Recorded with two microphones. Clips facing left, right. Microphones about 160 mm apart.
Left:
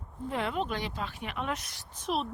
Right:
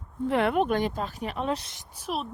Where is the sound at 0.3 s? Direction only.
65° right (ahead or behind); by 1.9 s 25° right (ahead or behind).